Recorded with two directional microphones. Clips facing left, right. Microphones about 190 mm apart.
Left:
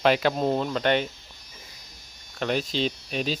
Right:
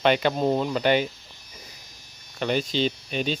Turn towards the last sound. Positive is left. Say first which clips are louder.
# right 2 dB
turn(degrees=0)  # may be behind; listen again after turning